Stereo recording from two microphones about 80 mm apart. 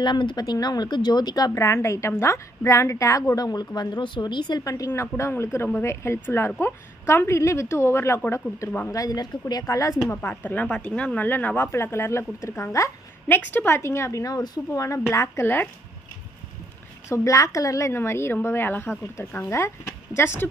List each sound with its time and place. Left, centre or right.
0.0 s speech: left
1.5 s a woman's voice: left
3.3 s speech: left
4.6 s speech: left
5.0 s a woman's voice: left
8.9 s speech: left
10.1 s speech: left
11.2 s a woman's voice: left
13.3 s a woman's voice: left
14.7 s speech: left
15.4 s speech: left
17.1 s a woman's voice: left